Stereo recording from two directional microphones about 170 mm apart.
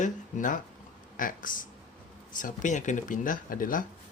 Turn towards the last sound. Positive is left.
turn(degrees=55)  # may be behind; listen again after turning